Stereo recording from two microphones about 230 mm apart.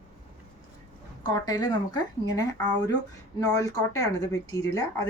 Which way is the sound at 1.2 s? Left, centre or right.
Centre.